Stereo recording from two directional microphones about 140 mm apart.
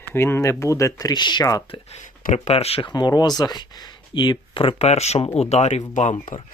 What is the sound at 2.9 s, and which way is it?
Speech, 30° left (ahead or behind).